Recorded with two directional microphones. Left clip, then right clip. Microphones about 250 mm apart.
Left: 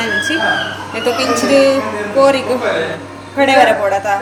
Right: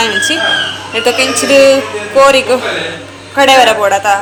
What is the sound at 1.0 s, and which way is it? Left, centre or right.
A woman's voice, centre.